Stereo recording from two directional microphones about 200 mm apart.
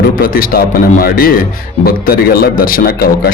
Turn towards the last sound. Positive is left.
turn(degrees=50)  # may be behind; listen again after turning